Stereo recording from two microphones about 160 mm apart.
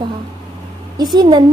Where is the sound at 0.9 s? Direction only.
25° right (ahead or behind).